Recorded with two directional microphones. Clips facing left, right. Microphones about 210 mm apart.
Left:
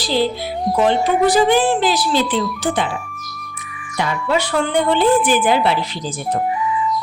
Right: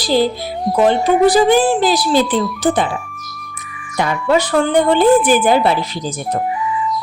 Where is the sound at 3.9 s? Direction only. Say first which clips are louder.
Right 4 dB; 45° right (ahead or behind).